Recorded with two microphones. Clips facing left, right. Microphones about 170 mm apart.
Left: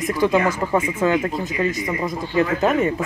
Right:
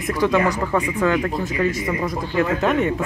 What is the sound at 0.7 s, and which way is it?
Speech, 25° left (ahead or behind).